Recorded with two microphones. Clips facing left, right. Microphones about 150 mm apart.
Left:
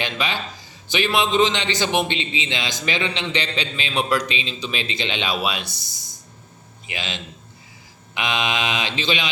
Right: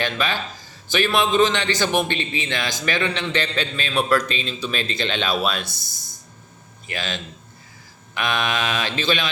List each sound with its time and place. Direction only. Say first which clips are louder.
0.0 s a man's voice: right 2 dB; 20° left (ahead or behind)
4.3 s speech: right 1 dB; 50° right (ahead or behind)
4.9 s a man's voice: right 2 dB; 15° left (ahead or behind)
5.6 s speech: even; 50° right (ahead or behind)
6.9 s a man's voice: right 2 dB; 20° left (ahead or behind)